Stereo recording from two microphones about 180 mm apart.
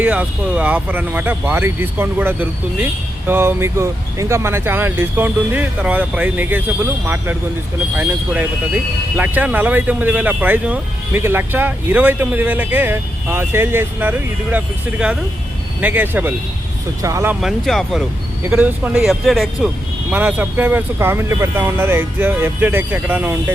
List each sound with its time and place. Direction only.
0.0 s speech: 5° right (ahead or behind)
7.9 s speech: 10° right (ahead or behind)
17.4 s speech: centre (ahead or behind)
18.4 s speech: 10° right (ahead or behind)